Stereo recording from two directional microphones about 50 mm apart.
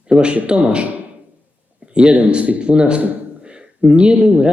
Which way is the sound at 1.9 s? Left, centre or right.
Centre.